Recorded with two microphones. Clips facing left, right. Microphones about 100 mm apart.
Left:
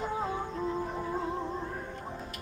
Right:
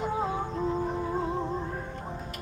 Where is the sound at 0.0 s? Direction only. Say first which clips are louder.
Right 3 dB; 15° right (ahead or behind).